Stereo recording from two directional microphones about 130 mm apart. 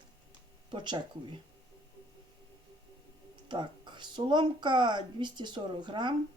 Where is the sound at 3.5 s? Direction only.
35° right (ahead or behind).